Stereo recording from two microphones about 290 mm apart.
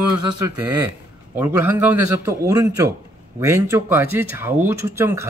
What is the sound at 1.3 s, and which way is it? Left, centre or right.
Speech, centre.